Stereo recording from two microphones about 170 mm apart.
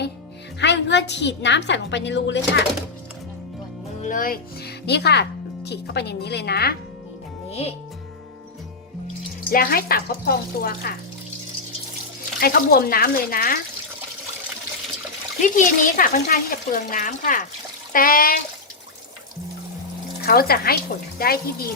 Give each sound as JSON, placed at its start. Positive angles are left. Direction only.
{"t": 0.6, "sound": "a woman's voice", "side_deg": 90}
{"t": 4.0, "sound": "speech", "side_deg": 55}
{"t": 9.5, "sound": "speech", "side_deg": 60}
{"t": 12.4, "sound": "speech", "side_deg": 60}
{"t": 15.4, "sound": "speech", "side_deg": 50}
{"t": 20.2, "sound": "speech", "side_deg": 65}